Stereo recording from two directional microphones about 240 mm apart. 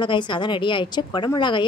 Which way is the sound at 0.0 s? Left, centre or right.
Centre.